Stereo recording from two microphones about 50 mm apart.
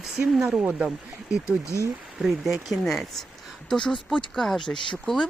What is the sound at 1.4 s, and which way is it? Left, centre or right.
Speech, left.